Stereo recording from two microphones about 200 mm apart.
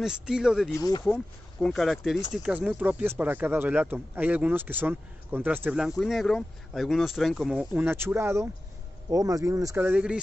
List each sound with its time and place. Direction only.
0.0 s speech: 5° right (ahead or behind)
0.7 s speech: 15° left (ahead or behind)
1.0 s speech: centre (ahead or behind)